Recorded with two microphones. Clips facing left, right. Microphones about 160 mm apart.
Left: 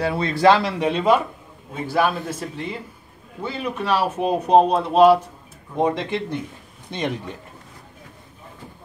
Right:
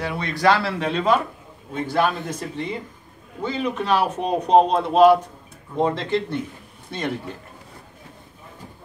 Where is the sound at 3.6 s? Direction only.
5° left (ahead or behind).